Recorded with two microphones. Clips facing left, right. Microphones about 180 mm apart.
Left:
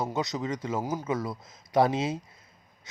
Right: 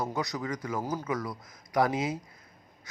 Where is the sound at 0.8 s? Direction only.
10° left (ahead or behind).